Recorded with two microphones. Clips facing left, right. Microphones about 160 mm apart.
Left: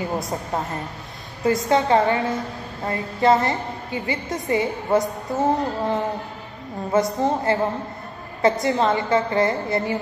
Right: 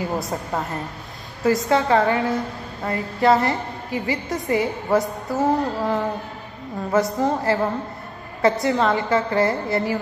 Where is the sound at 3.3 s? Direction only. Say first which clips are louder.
Right 1 dB; centre (ahead or behind).